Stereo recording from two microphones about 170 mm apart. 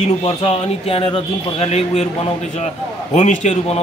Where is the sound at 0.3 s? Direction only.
35° left (ahead or behind).